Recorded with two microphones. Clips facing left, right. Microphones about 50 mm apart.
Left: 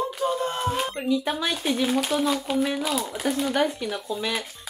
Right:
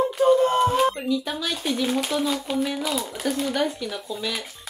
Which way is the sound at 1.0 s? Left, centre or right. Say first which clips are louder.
Left 1 dB; centre.